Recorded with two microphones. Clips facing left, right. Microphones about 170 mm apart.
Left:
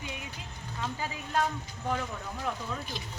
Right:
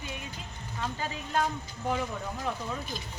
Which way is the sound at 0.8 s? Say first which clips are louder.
Right 1 dB; 5° left (ahead or behind).